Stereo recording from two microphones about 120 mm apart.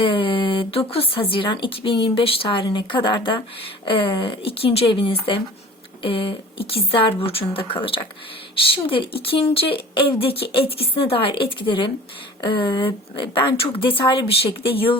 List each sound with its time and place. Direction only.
0.0 s speech: 45° left (ahead or behind)